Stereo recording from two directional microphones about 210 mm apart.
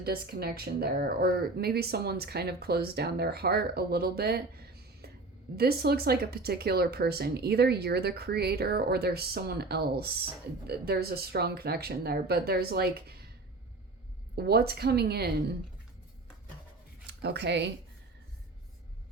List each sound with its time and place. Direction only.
0.0 s speech: 45° right (ahead or behind)
14.3 s speech: 50° right (ahead or behind)
17.1 s speech: 55° right (ahead or behind)